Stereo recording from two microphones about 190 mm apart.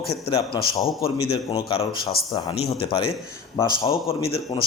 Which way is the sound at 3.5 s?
15° left (ahead or behind).